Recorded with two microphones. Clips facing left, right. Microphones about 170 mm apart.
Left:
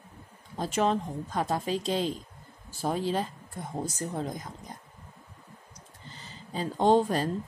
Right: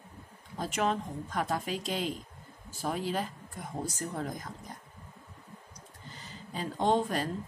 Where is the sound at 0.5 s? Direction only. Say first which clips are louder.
Left 4 dB; 30° left (ahead or behind).